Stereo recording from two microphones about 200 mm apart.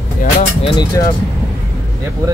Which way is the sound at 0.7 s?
20° left (ahead or behind).